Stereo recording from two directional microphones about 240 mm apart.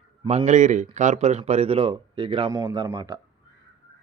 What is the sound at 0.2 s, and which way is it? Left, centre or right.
Speech, right.